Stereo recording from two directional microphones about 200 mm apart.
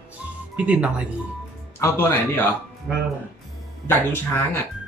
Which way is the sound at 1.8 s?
10° left (ahead or behind).